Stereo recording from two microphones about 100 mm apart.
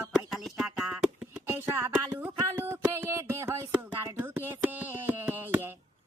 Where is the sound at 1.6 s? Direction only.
25° right (ahead or behind).